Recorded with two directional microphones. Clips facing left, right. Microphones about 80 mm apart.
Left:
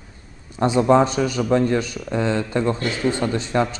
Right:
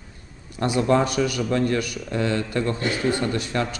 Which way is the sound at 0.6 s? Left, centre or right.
Left.